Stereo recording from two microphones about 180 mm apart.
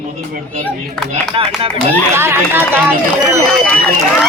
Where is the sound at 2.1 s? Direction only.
15° right (ahead or behind).